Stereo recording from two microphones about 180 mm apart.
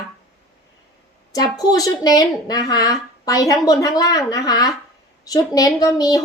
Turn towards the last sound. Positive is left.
turn(degrees=20)  # may be behind; listen again after turning